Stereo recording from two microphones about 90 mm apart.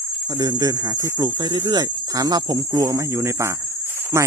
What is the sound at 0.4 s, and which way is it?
Speech, 45° right (ahead or behind).